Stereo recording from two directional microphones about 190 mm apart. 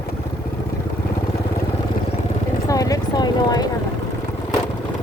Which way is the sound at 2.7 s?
20° left (ahead or behind).